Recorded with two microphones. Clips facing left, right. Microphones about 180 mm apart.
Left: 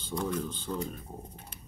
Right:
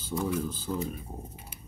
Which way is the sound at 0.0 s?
5° right (ahead or behind).